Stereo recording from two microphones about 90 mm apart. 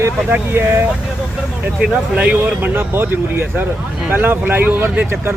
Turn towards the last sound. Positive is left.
turn(degrees=-20)  # may be behind; listen again after turning